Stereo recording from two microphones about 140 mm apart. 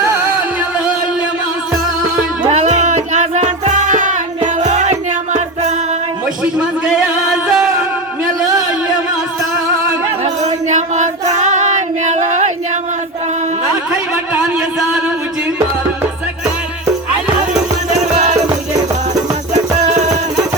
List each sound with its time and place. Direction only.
2.5 s music: 55° right (ahead or behind)
6.4 s music: 5° right (ahead or behind)
10.4 s child singing: 60° right (ahead or behind)
19.5 s music: 55° right (ahead or behind)